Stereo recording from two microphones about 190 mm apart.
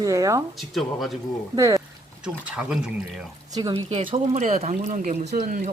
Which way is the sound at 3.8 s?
30° right (ahead or behind).